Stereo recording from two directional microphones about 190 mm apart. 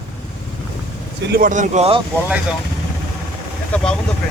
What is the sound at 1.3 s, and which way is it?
Speech, 45° right (ahead or behind).